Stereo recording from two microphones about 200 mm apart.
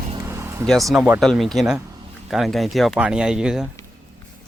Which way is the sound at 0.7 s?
Centre (ahead or behind).